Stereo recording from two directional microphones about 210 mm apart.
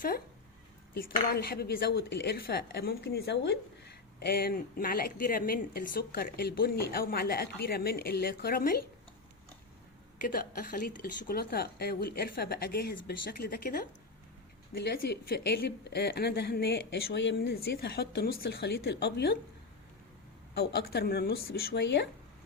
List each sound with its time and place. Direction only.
0.9 s a woman's voice: 45° left (ahead or behind)
10.2 s a woman's voice: 45° left (ahead or behind)
20.5 s a woman's voice: 50° left (ahead or behind)